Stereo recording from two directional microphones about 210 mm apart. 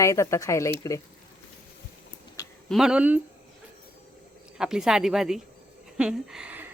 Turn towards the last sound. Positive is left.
turn(degrees=-5)  # may be behind; listen again after turning